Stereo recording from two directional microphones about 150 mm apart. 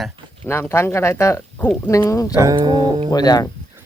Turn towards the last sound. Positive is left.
turn(degrees=25)  # may be behind; listen again after turning